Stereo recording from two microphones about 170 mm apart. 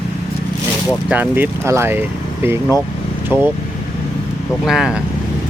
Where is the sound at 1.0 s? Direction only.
10° right (ahead or behind).